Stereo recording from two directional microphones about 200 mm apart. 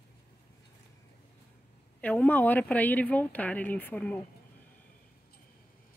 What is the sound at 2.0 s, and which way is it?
Speech, 5° left (ahead or behind).